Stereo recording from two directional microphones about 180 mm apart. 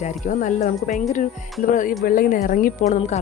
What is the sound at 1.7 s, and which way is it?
A woman's voice, 45° left (ahead or behind).